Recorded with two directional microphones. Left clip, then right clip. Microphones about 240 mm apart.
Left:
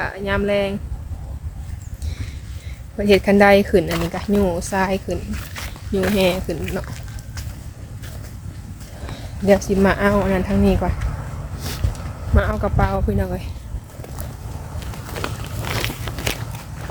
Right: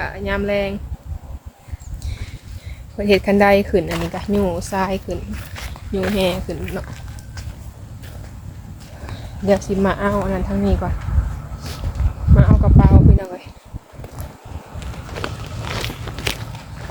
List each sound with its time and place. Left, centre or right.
0.0 s speech: centre
3.0 s speech: centre
6.5 s a sound: centre
9.5 s speech: centre
12.4 s speech: centre
15.2 s vehicle: centre
15.6 s biting: left